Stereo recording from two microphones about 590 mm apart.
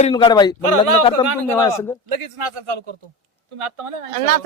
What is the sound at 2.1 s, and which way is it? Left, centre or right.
A man's voice, right.